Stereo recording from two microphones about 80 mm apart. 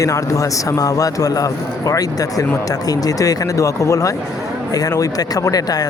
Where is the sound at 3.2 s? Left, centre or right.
Left.